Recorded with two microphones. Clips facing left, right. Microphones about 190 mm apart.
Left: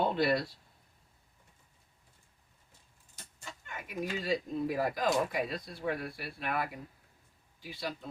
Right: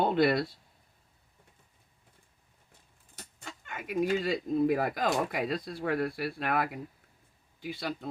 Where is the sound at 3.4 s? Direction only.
60° right (ahead or behind).